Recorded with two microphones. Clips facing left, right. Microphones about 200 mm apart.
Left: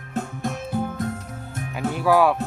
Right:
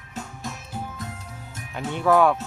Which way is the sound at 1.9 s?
5° left (ahead or behind).